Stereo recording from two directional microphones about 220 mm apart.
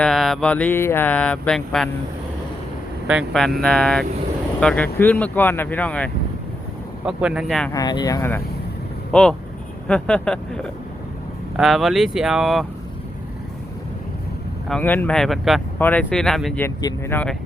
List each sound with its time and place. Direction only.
0.0 s speech: centre (ahead or behind)
3.1 s speech: centre (ahead or behind)
7.0 s speech: 5° right (ahead or behind)
7.7 s speech: 15° left (ahead or behind)
9.8 s speech: 5° left (ahead or behind)
14.7 s speech: 10° left (ahead or behind)